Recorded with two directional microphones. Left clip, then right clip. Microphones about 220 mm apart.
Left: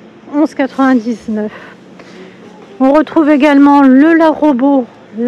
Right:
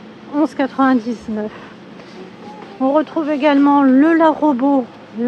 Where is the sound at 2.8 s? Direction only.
30° left (ahead or behind).